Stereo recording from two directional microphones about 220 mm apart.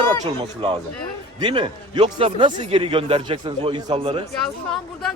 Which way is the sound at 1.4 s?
20° right (ahead or behind).